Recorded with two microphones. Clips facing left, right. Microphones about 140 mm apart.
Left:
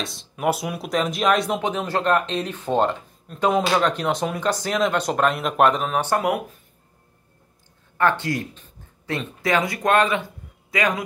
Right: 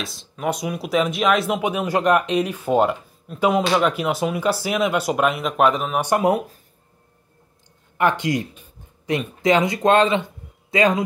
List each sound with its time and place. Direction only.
0.0 s speech: centre (ahead or behind)
5.9 s speech: 15° right (ahead or behind)
8.0 s speech: 15° right (ahead or behind)